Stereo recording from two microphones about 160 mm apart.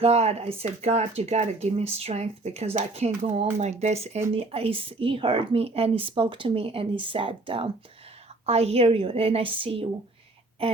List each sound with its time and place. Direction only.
0.0 s speech: 40° right (ahead or behind)